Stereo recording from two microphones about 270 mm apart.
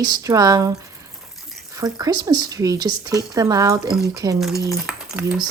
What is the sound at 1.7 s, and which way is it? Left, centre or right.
Speech, centre.